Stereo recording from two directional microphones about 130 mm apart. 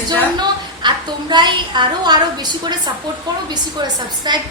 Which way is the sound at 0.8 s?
35° right (ahead or behind).